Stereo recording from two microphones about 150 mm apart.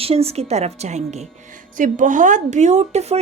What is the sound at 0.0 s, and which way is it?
A woman's voice, 40° right (ahead or behind).